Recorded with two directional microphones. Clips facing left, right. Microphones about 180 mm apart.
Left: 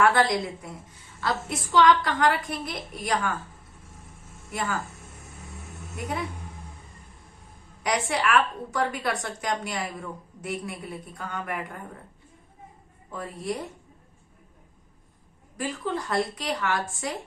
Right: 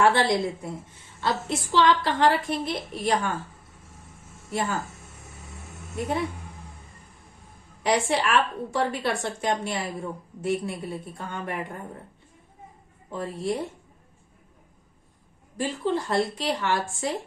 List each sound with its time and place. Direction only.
0.0 s a woman's voice: 25° right (ahead or behind)
7.9 s a woman's voice: 30° right (ahead or behind)
13.1 s a woman's voice: 25° right (ahead or behind)
15.5 s a woman's voice: 30° right (ahead or behind)